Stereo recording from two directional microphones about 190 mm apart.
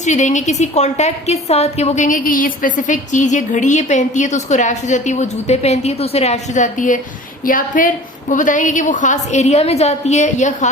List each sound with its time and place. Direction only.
0.0 s a woman's voice: 40° left (ahead or behind)